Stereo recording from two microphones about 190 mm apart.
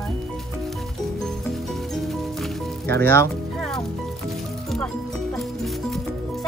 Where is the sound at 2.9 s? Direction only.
10° left (ahead or behind).